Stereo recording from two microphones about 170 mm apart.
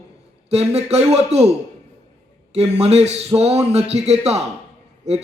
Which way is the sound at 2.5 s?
40° right (ahead or behind).